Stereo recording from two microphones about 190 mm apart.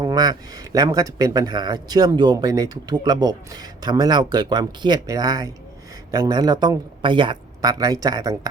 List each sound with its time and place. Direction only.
0.0 s speech: 20° right (ahead or behind)